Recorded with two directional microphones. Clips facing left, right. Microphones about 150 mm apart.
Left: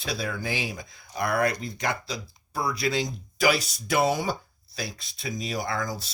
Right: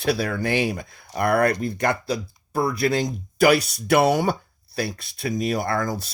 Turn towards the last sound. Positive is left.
turn(degrees=-55)  # may be behind; listen again after turning